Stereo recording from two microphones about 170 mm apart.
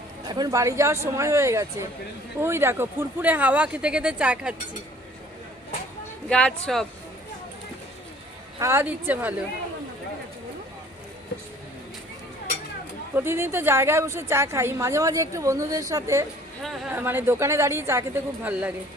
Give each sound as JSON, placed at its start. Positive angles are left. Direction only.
{"t": 0.3, "sound": "a woman's voice", "side_deg": -20}
{"t": 6.2, "sound": "speech", "side_deg": 5}
{"t": 8.5, "sound": "a woman's voice", "side_deg": -15}
{"t": 13.1, "sound": "a woman's voice", "side_deg": -15}
{"t": 16.6, "sound": "speech", "side_deg": 0}
{"t": 16.9, "sound": "a woman's voice", "side_deg": -10}